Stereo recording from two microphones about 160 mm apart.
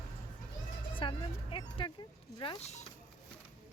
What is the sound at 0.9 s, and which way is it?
Speech, 30° left (ahead or behind).